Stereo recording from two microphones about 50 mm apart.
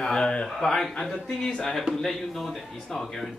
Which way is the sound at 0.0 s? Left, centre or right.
Centre.